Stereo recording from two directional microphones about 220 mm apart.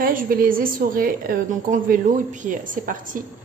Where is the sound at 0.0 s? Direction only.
40° right (ahead or behind).